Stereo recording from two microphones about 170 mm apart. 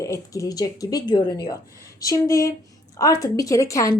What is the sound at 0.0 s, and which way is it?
Speech, 20° left (ahead or behind).